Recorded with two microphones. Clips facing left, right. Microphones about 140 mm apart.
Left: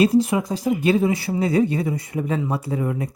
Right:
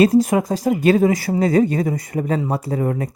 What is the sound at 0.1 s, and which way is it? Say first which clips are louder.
Speech: right 3 dB; 45° right (ahead or behind).